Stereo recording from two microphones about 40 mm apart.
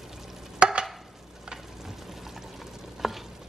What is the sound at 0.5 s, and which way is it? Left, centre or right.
Stir, right.